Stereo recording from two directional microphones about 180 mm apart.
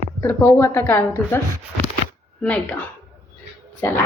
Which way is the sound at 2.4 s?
10° left (ahead or behind).